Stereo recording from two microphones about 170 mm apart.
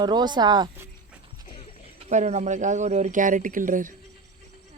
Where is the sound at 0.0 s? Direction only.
25° right (ahead or behind).